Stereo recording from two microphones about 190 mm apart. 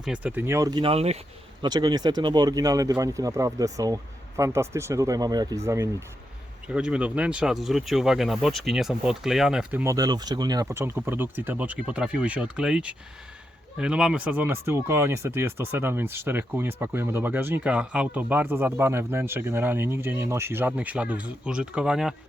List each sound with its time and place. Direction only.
0.0 s speech: 5° right (ahead or behind); by 1.2 s 35° right (ahead or behind)
1.6 s speech: 20° right (ahead or behind); by 9.8 s 5° right (ahead or behind)
9.8 s speech: 20° right (ahead or behind)